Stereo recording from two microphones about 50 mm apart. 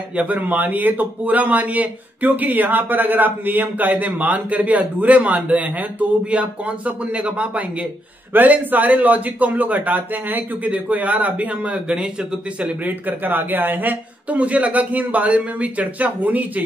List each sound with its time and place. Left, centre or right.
0.1 s speech: right
0.4 s speech: right
8.3 s speech: right
11.7 s speech: centre
12.8 s speech: right
14.4 s speech: right